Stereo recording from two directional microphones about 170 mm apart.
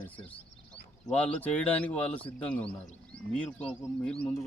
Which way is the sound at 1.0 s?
10° left (ahead or behind).